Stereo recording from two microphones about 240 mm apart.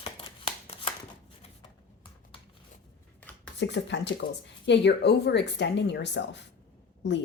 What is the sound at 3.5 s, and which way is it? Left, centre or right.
Speech, left.